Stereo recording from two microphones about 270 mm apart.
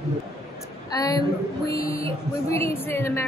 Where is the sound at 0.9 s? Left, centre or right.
Centre.